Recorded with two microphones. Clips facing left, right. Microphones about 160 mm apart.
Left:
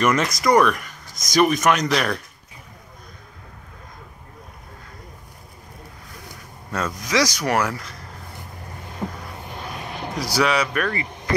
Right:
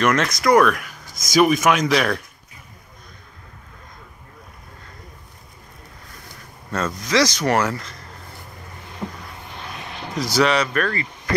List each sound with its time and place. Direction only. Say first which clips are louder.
0.0 s speech: right 1 dB; 5° left (ahead or behind)
6.7 s speech: right 2 dB; 10° left (ahead or behind)
9.0 s vehicle: left 1 dB; 15° left (ahead or behind)
10.3 s speech: right 2 dB; 5° left (ahead or behind)